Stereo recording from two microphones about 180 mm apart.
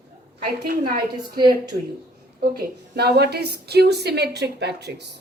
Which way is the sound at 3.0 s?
65° right (ahead or behind).